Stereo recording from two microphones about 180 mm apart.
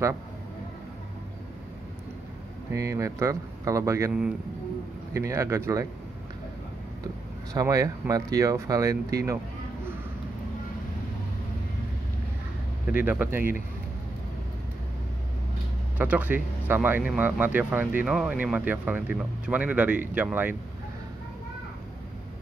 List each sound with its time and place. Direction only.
2.7 s speech: 15° right (ahead or behind)
7.5 s speech: 20° right (ahead or behind)
12.9 s speech: 10° right (ahead or behind)
16.0 s speech: 10° right (ahead or behind)